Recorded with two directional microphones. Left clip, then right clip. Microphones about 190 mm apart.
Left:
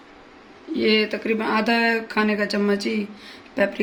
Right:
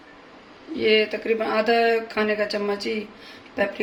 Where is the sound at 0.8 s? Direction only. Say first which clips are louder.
Right 1 dB; 60° left (ahead or behind).